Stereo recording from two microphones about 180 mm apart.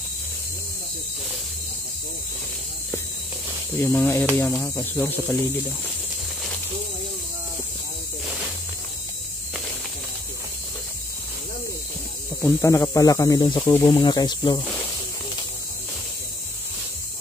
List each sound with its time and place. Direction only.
3.7 s speech: 10° left (ahead or behind)
12.4 s speech: 15° left (ahead or behind)